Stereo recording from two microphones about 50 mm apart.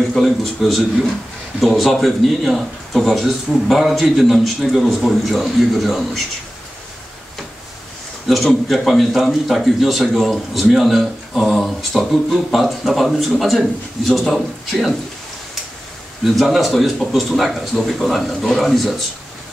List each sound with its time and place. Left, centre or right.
0.2 s a man's voice: centre
8.3 s a man's voice: centre
16.3 s a man's voice: centre